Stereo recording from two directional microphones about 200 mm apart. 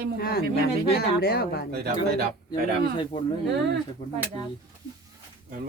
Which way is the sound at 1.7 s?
50° right (ahead or behind).